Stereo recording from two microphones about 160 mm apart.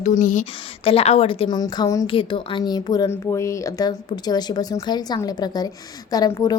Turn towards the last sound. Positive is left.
turn(degrees=25)  # may be behind; listen again after turning